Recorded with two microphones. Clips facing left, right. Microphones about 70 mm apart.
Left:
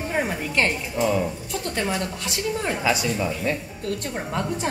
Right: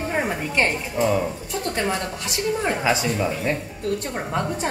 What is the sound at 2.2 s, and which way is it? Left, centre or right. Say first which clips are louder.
Speech: right 5 dB; right.